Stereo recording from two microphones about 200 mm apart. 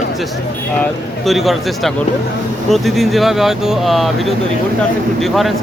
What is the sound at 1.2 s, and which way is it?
Speech, centre (ahead or behind).